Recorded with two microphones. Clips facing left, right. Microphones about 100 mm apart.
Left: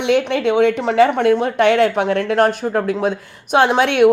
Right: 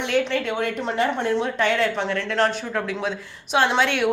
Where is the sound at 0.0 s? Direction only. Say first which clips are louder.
Left 6 dB; 65° left (ahead or behind).